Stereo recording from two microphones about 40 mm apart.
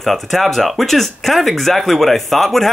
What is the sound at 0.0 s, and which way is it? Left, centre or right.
Speech, centre.